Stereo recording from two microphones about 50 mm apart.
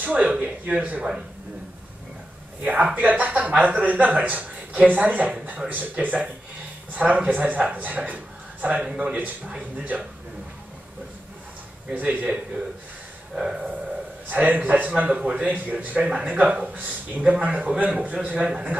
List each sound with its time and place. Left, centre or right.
0.2 s speech: centre
2.6 s a man's voice: right
11.9 s speech: right
13.3 s a sound: centre
14.3 s speech: right
15.4 s speech: right
16.0 s speech: centre